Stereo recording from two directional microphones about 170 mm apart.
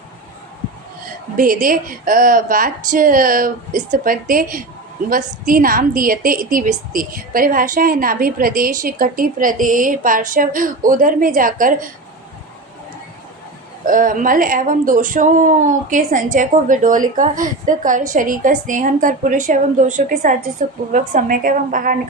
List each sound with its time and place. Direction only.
1.4 s a woman's voice: 55° right (ahead or behind)
13.8 s speech: 50° right (ahead or behind)